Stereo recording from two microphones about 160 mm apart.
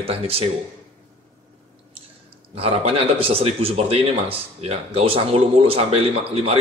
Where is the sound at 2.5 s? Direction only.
40° right (ahead or behind).